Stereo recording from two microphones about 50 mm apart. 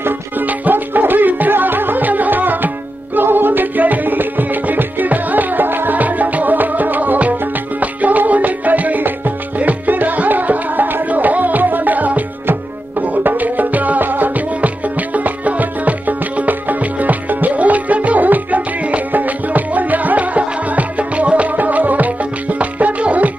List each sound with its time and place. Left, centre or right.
0.0 s music: right